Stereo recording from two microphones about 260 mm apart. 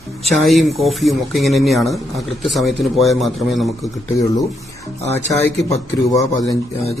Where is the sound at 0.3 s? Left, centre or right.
Centre.